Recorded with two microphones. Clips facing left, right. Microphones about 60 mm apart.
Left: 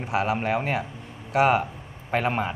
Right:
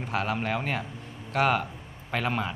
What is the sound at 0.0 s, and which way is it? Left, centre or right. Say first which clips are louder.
A man's voice: left 4 dB; left.